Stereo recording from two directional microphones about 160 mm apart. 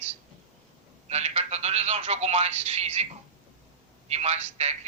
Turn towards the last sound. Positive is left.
turn(degrees=-45)  # may be behind; listen again after turning